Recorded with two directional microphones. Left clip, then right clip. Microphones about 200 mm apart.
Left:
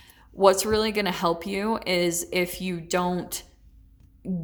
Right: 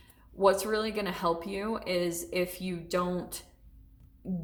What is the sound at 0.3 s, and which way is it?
A woman's voice, 35° left (ahead or behind).